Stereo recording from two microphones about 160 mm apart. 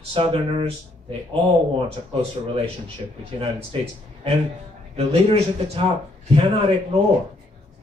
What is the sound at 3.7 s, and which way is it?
Speech, 35° right (ahead or behind).